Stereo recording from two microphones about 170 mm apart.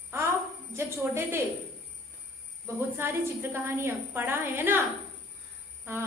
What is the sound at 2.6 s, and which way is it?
A woman's voice, 15° right (ahead or behind).